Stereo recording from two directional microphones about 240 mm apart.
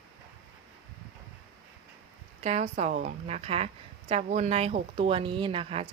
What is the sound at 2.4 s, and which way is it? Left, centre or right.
A woman's voice, right.